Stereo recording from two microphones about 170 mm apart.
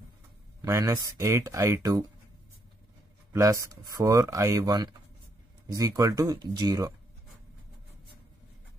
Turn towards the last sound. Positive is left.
turn(degrees=-20)  # may be behind; listen again after turning